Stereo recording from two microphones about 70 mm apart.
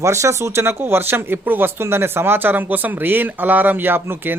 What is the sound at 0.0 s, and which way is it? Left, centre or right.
Speech, right.